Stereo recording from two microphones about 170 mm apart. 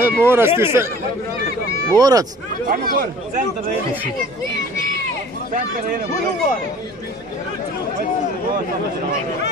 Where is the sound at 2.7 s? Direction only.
60° right (ahead or behind).